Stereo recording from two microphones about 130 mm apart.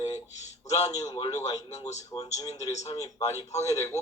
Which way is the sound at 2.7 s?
60° left (ahead or behind).